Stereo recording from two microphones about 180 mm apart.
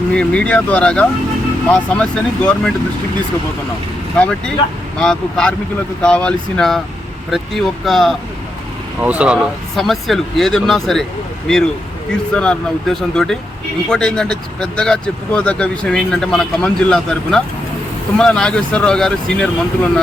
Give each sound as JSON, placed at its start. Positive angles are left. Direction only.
{"t": 0.1, "sound": "speech", "side_deg": 5}
{"t": 4.2, "sound": "speech", "side_deg": 5}